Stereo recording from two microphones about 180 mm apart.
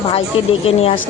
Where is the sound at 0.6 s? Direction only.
35° left (ahead or behind).